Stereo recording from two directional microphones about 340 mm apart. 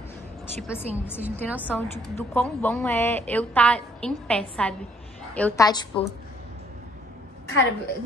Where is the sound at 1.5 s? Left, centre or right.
Centre.